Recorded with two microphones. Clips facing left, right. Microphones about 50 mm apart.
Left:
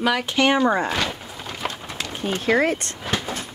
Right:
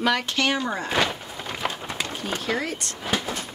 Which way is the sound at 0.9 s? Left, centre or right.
Centre.